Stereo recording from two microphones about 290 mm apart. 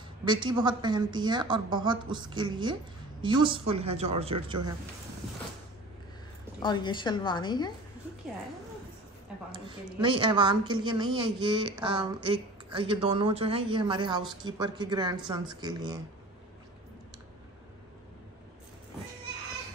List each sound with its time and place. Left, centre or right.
0.2 s speech: centre
6.6 s a woman's voice: centre
9.5 s speech: centre